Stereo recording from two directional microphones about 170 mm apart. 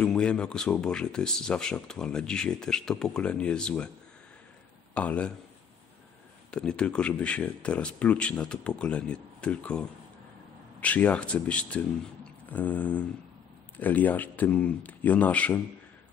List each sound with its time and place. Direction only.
0.0 s speech: 5° left (ahead or behind)
4.9 s speech: 5° left (ahead or behind)
6.5 s speech: 5° left (ahead or behind)